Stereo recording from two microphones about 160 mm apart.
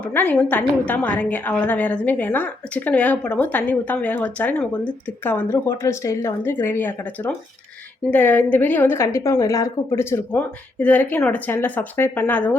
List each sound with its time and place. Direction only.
0.0 s a woman's voice: 10° left (ahead or behind)